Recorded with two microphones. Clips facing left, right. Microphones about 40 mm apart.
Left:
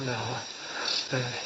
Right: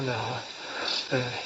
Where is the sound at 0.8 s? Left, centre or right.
Centre.